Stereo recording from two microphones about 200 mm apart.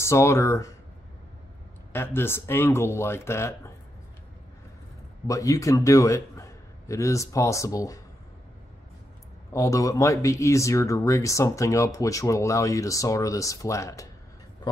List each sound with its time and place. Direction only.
0.0 s speech: 15° left (ahead or behind)
1.9 s speech: 10° left (ahead or behind)
5.2 s a man's voice: 15° left (ahead or behind)
9.5 s speech: 15° left (ahead or behind)